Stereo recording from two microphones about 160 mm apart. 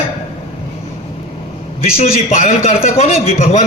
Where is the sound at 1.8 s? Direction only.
40° left (ahead or behind).